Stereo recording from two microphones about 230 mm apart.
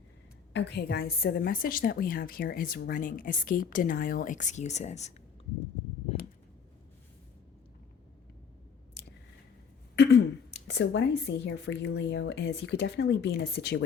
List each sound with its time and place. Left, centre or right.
0.5 s a woman's voice: left
9.9 s speech: left